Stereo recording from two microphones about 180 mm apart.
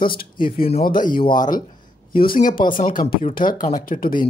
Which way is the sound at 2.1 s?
50° left (ahead or behind).